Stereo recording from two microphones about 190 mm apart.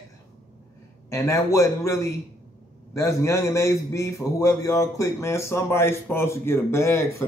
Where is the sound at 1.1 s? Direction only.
15° left (ahead or behind).